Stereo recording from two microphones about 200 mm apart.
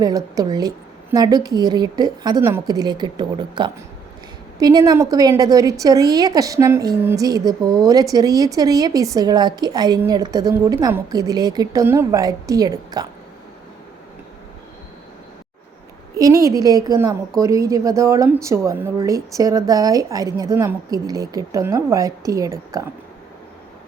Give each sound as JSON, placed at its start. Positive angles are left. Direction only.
{"t": 0.0, "sound": "a woman's voice", "side_deg": -20}
{"t": 16.1, "sound": "a woman's voice", "side_deg": -15}